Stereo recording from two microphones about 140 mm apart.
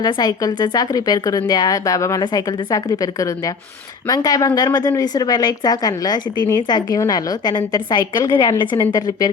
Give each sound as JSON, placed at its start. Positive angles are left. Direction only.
{"t": 0.0, "sound": "a woman's voice", "side_deg": 30}